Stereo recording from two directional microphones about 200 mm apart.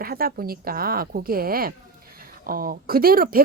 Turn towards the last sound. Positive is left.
turn(degrees=-45)  # may be behind; listen again after turning